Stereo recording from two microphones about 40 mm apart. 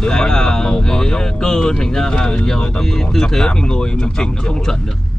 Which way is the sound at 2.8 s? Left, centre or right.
Centre.